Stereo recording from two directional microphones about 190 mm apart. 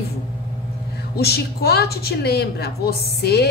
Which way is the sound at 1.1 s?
55° left (ahead or behind).